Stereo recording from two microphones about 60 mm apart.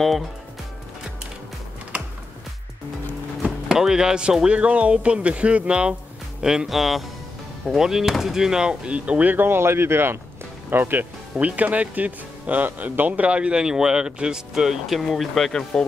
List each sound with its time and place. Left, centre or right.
3.4 s speech: centre